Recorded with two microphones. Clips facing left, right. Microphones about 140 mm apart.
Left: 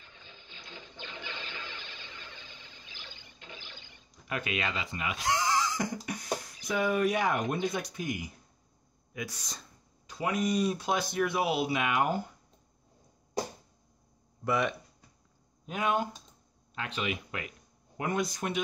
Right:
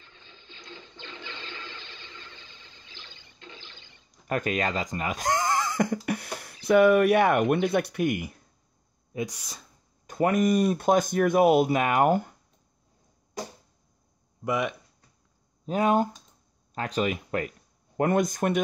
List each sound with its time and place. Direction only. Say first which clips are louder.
0.2 s toilet flush: right 2 dB; 15° left (ahead or behind)
4.3 s speech: right 7 dB; 45° right (ahead or behind); by 8.3 s 65° right (ahead or behind)
9.2 s speech: right 7 dB; 10° right (ahead or behind)
10.0 s speech: right 8 dB; 55° right (ahead or behind)
14.4 s speech: right 2 dB; 15° right (ahead or behind)
15.6 s speech: right 7 dB; 35° right (ahead or behind)